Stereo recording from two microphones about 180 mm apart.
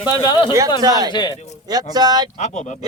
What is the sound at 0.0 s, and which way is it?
Speech, 25° left (ahead or behind).